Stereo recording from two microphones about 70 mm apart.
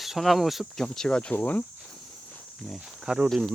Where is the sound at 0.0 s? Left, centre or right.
Centre.